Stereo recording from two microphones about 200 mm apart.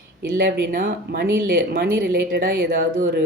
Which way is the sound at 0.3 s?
55° right (ahead or behind).